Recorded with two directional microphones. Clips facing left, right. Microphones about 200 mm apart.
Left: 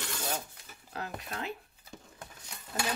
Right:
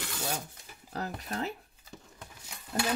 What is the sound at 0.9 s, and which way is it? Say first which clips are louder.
Speech: right 3 dB; 40° right (ahead or behind).